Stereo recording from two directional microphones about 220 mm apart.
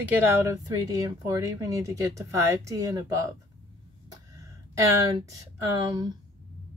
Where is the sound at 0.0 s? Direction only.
10° right (ahead or behind).